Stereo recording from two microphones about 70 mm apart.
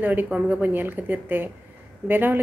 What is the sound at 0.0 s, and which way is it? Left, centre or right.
A woman's voice, right.